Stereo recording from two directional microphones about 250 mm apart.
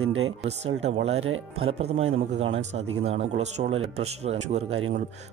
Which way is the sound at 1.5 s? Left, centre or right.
Right.